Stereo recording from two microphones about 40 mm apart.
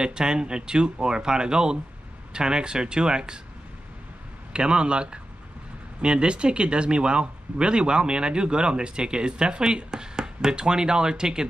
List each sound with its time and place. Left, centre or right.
0.0 s speech: right
4.5 s speech: right